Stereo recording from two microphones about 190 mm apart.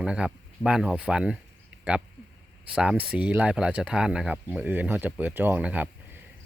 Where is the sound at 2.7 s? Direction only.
5° right (ahead or behind).